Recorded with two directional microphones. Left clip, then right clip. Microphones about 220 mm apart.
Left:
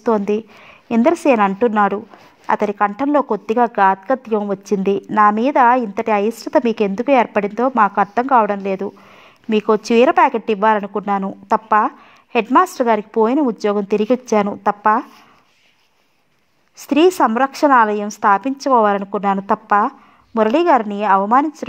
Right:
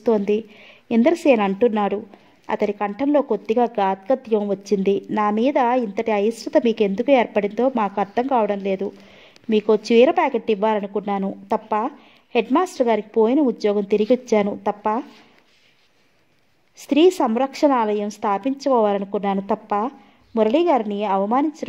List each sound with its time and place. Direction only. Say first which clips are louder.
0.0 s a woman's voice: left 2 dB; 20° left (ahead or behind)
16.7 s a woman's voice: left 2 dB; 25° left (ahead or behind)